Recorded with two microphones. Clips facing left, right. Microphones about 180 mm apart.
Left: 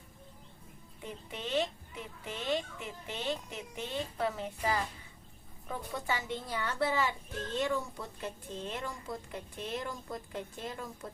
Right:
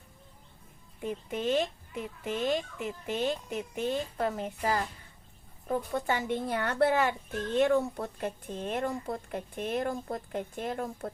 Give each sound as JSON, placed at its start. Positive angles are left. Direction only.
{"t": 1.0, "sound": "speech", "side_deg": -45}